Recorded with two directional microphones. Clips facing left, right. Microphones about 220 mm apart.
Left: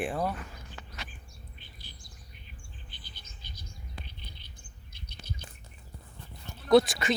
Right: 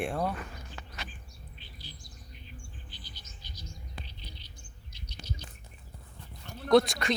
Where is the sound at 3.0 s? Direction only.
55° left (ahead or behind).